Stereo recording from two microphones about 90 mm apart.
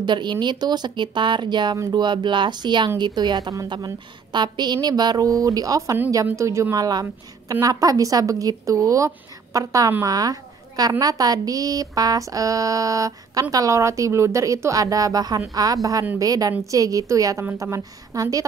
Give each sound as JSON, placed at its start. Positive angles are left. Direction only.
{"t": 0.0, "sound": "a woman's voice", "side_deg": -60}